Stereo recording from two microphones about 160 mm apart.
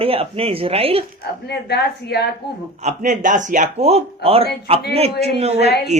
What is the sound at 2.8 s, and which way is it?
A man's voice, 45° right (ahead or behind).